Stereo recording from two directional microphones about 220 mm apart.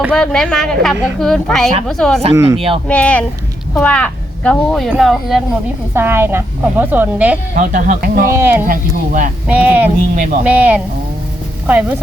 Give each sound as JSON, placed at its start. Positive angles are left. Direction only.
{"t": 0.1, "sound": "speech", "side_deg": 5}
{"t": 2.3, "sound": "a woman's voice", "side_deg": -15}
{"t": 2.8, "sound": "a woman's voice", "side_deg": 5}
{"t": 7.5, "sound": "speech", "side_deg": -35}
{"t": 8.3, "sound": "a woman's voice", "side_deg": -10}
{"t": 8.6, "sound": "speech", "side_deg": -35}
{"t": 9.5, "sound": "a woman's voice", "side_deg": -5}